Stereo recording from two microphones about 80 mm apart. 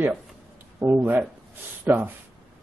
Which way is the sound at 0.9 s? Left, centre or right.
Right.